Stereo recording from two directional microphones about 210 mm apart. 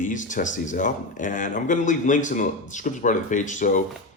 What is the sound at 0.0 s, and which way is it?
Speech, 35° left (ahead or behind).